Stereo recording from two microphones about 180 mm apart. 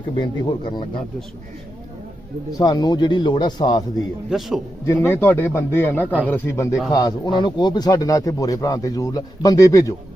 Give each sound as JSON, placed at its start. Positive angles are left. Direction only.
{"t": 0.2, "sound": "speech", "side_deg": 25}
{"t": 2.6, "sound": "speech", "side_deg": 20}
{"t": 3.9, "sound": "a man's voice", "side_deg": 0}
{"t": 4.9, "sound": "speech", "side_deg": 15}